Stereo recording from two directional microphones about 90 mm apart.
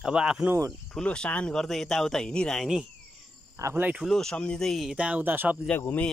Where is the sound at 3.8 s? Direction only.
15° right (ahead or behind).